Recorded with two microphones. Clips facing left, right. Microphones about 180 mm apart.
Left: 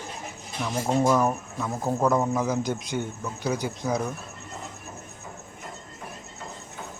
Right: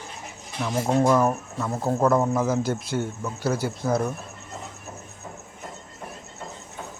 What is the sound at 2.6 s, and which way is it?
Speech, 15° left (ahead or behind).